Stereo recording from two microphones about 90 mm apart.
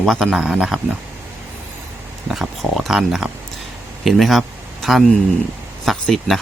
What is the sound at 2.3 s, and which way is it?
Speech, 5° right (ahead or behind).